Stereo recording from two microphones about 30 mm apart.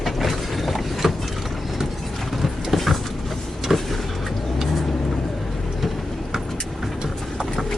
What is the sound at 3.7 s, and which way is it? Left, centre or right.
Vehicle, centre.